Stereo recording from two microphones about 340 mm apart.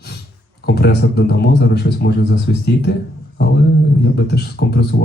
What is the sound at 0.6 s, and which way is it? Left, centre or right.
Speech, left.